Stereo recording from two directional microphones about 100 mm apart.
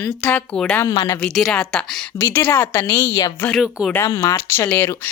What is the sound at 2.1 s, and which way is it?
Speech, 20° left (ahead or behind).